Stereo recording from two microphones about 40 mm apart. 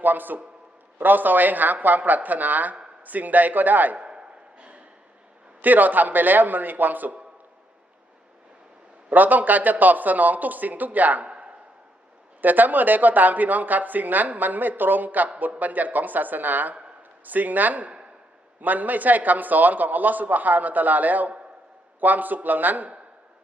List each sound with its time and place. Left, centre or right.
0.0 s speech: right
3.9 s a sound: right
5.6 s speech: right
9.0 s speech: right
11.2 s a sound: right
12.4 s speech: right